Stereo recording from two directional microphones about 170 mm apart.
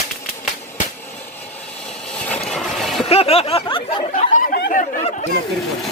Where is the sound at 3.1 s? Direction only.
35° left (ahead or behind).